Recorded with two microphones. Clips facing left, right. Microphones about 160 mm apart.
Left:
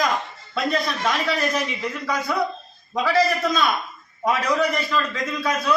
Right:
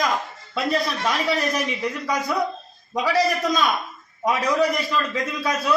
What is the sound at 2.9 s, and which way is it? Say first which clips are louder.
A man's voice: left 1 dB; 15° right (ahead or behind).